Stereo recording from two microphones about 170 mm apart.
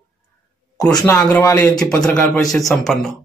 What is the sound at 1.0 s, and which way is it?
Speech, 5° left (ahead or behind).